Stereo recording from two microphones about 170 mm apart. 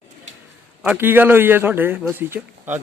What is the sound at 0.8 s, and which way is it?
A man's voice, 10° right (ahead or behind).